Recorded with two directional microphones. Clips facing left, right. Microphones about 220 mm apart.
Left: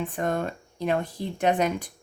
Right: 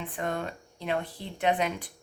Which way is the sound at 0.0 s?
45° left (ahead or behind).